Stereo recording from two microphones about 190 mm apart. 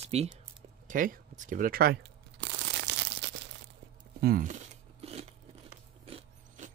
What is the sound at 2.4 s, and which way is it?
Crushing, 70° right (ahead or behind).